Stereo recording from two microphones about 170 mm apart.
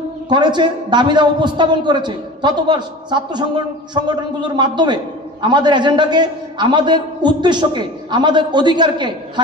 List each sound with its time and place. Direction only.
0.3 s a man's voice: 25° right (ahead or behind)